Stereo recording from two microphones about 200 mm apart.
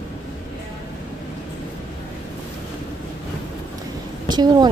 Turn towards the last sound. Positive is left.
turn(degrees=-20)  # may be behind; listen again after turning